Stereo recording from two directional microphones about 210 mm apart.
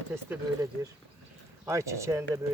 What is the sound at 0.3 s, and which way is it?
Speech, 15° right (ahead or behind).